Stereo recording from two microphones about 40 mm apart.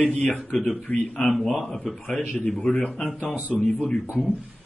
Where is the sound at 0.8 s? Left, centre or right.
Left.